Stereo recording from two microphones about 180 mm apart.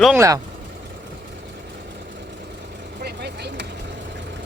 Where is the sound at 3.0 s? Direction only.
65° right (ahead or behind).